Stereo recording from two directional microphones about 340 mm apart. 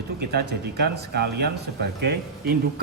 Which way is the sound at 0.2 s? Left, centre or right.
Right.